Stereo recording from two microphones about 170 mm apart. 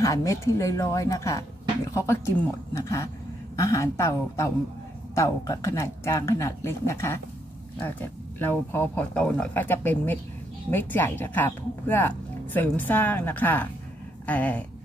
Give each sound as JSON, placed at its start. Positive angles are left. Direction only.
{"t": 0.0, "sound": "speech", "side_deg": 20}